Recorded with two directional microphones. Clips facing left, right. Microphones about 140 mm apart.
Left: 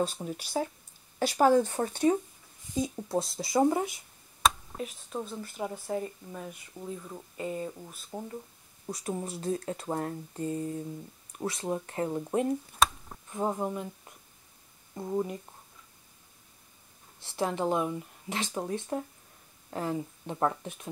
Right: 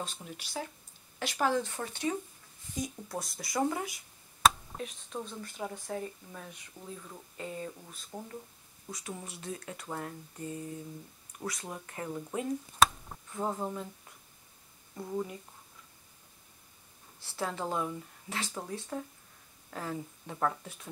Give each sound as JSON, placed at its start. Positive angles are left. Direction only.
{"t": 0.0, "sound": "speech", "side_deg": 40}
{"t": 2.7, "sound": "speech", "side_deg": 25}
{"t": 4.4, "sound": "speech", "side_deg": 0}
{"t": 8.8, "sound": "speech", "side_deg": 35}
{"t": 12.7, "sound": "a sound", "side_deg": 0}
{"t": 13.3, "sound": "speech", "side_deg": 15}
{"t": 15.0, "sound": "speech", "side_deg": 25}
{"t": 17.2, "sound": "speech", "side_deg": 20}